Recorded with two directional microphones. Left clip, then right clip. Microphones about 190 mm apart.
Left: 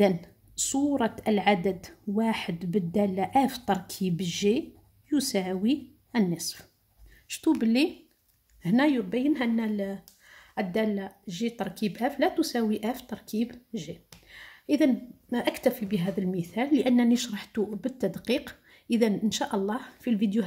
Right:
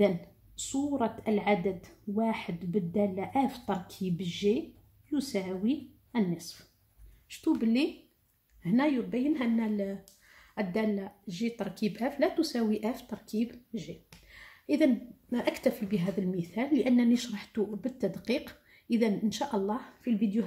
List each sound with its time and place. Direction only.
0.6 s a woman's voice: 50° left (ahead or behind)